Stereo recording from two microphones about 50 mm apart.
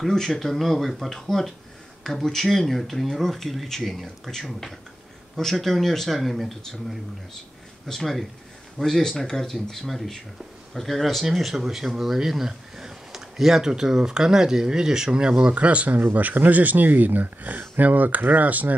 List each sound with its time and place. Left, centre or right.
0.1 s speech: centre; by 16.0 s right
16.0 s speech: right